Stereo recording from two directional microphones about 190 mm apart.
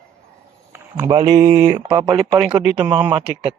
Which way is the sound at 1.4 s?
15° right (ahead or behind).